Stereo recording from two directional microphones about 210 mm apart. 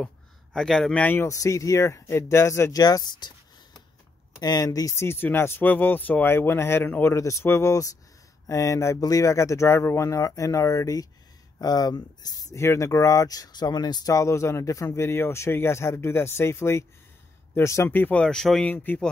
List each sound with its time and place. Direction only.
0.0 s speech: centre (ahead or behind)